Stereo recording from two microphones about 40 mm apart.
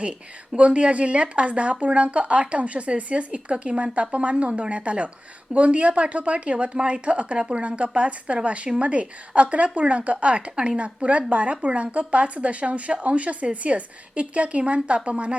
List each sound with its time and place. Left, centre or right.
0.5 s speech: right